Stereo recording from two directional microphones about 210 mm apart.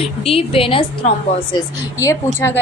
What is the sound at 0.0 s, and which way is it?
A woman's voice, 25° left (ahead or behind).